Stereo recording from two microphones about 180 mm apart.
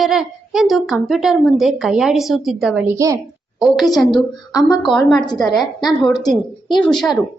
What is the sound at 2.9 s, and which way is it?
Speech, 15° right (ahead or behind).